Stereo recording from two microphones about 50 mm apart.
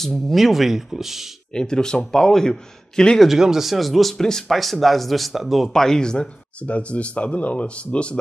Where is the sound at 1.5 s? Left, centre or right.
Centre.